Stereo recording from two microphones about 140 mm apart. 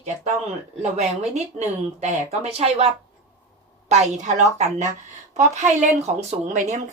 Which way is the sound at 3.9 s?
55° right (ahead or behind).